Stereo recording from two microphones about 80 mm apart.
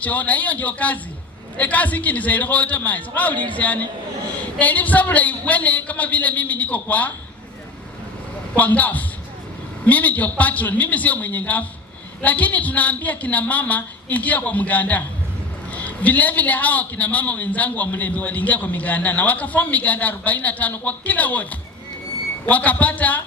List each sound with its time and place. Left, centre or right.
0.0 s a man's voice: centre
8.5 s a man's voice: centre